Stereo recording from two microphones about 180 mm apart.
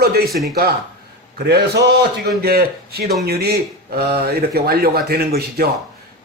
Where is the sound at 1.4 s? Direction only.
65° right (ahead or behind).